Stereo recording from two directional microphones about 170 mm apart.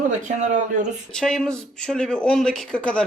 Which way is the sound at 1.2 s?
5° left (ahead or behind).